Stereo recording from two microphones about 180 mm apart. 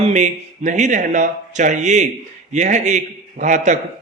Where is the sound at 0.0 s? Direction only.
40° right (ahead or behind).